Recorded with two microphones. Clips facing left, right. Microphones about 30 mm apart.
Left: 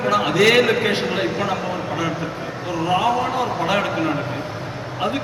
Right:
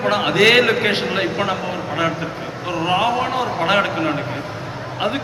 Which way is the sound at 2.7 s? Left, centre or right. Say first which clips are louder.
Right 1 dB; right.